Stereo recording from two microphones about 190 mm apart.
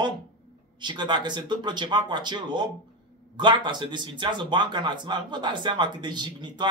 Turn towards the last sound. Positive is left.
turn(degrees=-25)  # may be behind; listen again after turning